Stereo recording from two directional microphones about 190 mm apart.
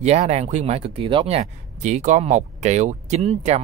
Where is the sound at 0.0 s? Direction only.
35° right (ahead or behind).